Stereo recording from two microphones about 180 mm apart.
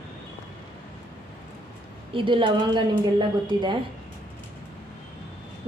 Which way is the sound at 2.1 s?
30° right (ahead or behind).